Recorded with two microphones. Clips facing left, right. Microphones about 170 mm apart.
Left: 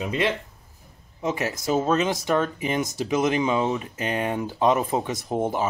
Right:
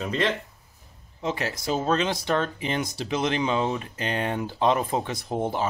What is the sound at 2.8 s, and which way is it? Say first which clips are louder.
Speech: left 3 dB; 45° left (ahead or behind).